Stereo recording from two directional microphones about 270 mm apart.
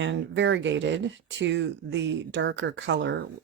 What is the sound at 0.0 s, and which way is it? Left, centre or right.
Speech, right.